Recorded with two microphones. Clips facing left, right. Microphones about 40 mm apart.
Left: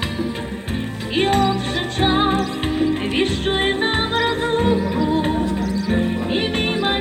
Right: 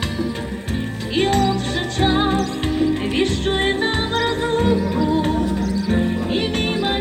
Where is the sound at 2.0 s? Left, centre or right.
Centre.